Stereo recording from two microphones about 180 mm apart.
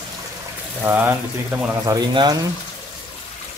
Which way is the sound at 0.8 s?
10° right (ahead or behind).